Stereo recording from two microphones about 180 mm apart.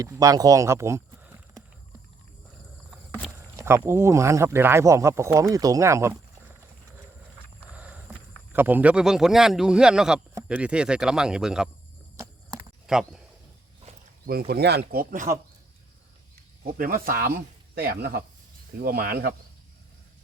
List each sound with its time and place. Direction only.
0.0 s speech: 20° right (ahead or behind)
3.6 s speech: 15° right (ahead or behind)
7.7 s walk: 10° right (ahead or behind)
8.5 s a man's voice: 10° right (ahead or behind)
12.1 s a sound: 15° right (ahead or behind)
12.9 s speech: 5° right (ahead or behind)
13.9 s a sound: 35° right (ahead or behind)
14.3 s speech: 60° right (ahead or behind)
16.7 s speech: 50° right (ahead or behind)